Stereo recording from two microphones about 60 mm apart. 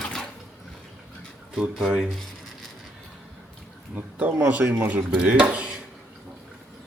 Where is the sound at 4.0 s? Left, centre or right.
Right.